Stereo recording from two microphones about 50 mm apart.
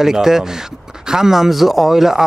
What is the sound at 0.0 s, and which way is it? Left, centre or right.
Speech, centre.